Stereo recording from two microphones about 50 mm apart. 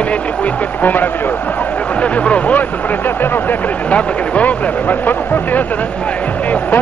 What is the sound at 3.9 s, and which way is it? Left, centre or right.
Speech, left.